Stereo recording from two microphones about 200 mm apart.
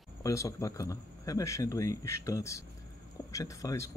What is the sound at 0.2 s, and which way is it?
Speech, 15° left (ahead or behind).